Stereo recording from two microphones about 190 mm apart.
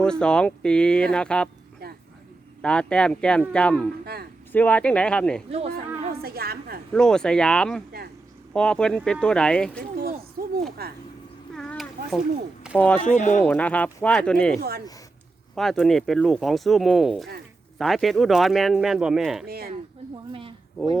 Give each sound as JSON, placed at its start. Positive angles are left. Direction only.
{"t": 0.0, "sound": "speech", "side_deg": 5}
{"t": 1.8, "sound": "vehicle", "side_deg": -55}
{"t": 2.6, "sound": "speech", "side_deg": 5}
{"t": 4.0, "sound": "speech", "side_deg": -55}
{"t": 4.5, "sound": "speech", "side_deg": 10}
{"t": 5.5, "sound": "speech", "side_deg": -30}
{"t": 6.2, "sound": "a woman's voice", "side_deg": -55}
{"t": 6.9, "sound": "speech", "side_deg": 5}
{"t": 10.4, "sound": "a sound", "side_deg": -50}
{"t": 10.8, "sound": "speech", "side_deg": -55}
{"t": 11.5, "sound": "a sound", "side_deg": 5}
{"t": 13.0, "sound": "speech", "side_deg": 40}
{"t": 13.4, "sound": "speech", "side_deg": 10}
{"t": 19.5, "sound": "a woman's voice", "side_deg": -55}